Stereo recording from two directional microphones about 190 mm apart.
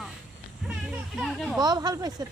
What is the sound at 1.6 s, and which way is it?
Speech, 20° right (ahead or behind).